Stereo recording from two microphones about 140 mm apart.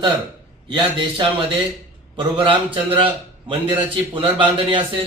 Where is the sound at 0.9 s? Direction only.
35° right (ahead or behind).